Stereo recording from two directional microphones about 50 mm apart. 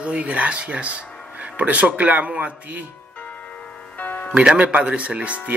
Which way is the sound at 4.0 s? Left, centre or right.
Left.